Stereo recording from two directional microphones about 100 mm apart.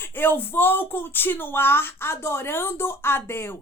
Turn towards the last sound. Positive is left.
turn(degrees=20)  # may be behind; listen again after turning